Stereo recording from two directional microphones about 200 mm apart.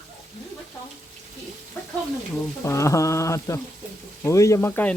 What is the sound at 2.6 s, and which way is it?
Speech, 15° left (ahead or behind).